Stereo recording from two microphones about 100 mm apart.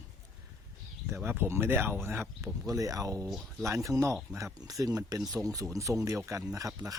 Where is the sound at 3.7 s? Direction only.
30° right (ahead or behind).